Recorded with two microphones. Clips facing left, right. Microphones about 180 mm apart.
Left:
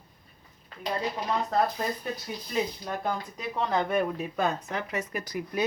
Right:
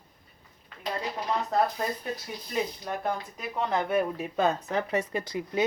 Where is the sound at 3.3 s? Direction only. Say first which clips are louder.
Left 2 dB; 5° right (ahead or behind).